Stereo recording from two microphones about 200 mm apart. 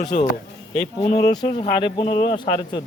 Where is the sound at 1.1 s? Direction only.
20° left (ahead or behind).